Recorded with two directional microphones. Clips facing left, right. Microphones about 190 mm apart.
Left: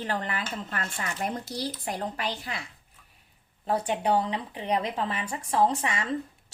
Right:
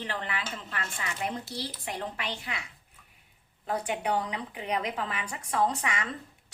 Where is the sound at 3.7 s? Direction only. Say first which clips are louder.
Left 4 dB; 30° left (ahead or behind).